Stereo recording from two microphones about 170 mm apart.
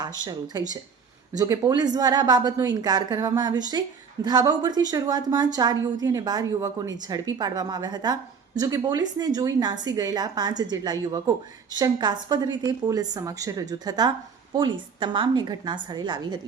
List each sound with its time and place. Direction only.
0.0 s a woman's voice: 25° right (ahead or behind)